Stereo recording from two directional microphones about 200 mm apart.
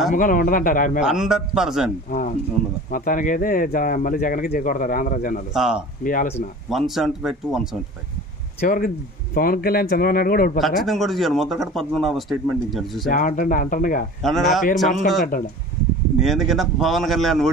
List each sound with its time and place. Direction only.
0.1 s speech: 40° left (ahead or behind)
1.0 s speech: 5° right (ahead or behind)
2.0 s speech: 45° left (ahead or behind)
5.5 s speech: 5° right (ahead or behind)
8.5 s speech: 45° left (ahead or behind)
10.6 s speech: centre (ahead or behind)
13.1 s speech: 40° left (ahead or behind)
14.2 s speech: centre (ahead or behind)